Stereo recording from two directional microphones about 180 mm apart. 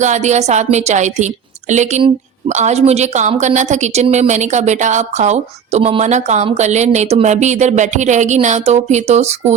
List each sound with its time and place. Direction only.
0.0 s a woman's voice: 40° right (ahead or behind)